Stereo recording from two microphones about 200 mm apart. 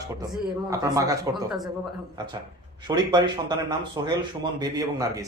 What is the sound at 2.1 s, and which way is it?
Speech, 25° right (ahead or behind).